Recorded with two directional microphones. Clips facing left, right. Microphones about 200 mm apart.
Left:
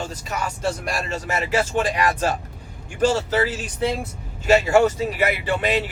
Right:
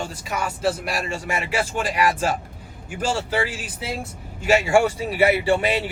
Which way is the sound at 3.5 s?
5° right (ahead or behind).